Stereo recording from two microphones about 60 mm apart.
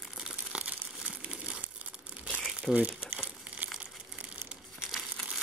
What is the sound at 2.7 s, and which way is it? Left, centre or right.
Crumpling, right.